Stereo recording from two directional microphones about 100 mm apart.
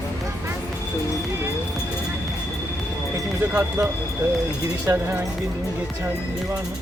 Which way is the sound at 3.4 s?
20° right (ahead or behind).